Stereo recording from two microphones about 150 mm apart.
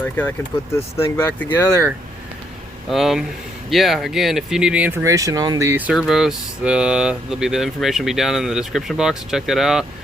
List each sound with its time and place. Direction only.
0.0 s speech: 10° left (ahead or behind)
2.9 s speech: centre (ahead or behind)
5.0 s speech: 20° right (ahead or behind); by 9.8 s centre (ahead or behind)